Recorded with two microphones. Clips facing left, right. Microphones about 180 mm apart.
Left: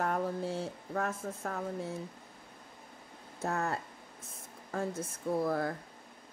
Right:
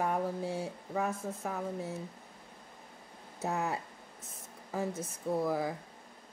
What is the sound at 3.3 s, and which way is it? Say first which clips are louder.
Speech: even; 5° right (ahead or behind).